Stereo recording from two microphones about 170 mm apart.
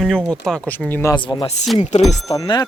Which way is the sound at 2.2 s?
20° left (ahead or behind).